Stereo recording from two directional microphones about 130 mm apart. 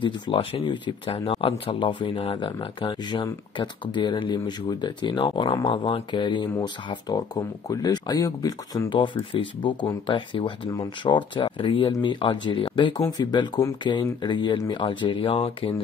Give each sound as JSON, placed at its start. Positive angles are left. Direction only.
{"t": 0.0, "sound": "speech", "side_deg": 40}